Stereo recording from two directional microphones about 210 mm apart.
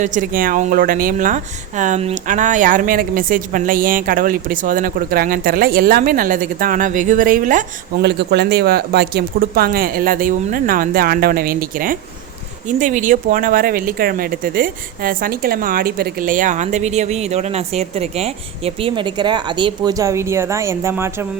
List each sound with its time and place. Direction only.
0.0 s speech: 35° right (ahead or behind)
8.0 s speech: 55° right (ahead or behind); by 21.2 s 10° right (ahead or behind)